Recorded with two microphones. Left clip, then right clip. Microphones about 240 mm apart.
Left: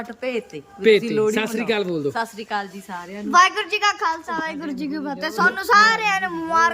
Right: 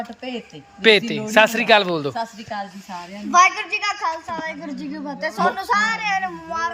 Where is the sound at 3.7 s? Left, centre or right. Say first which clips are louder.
Left 2 dB; left.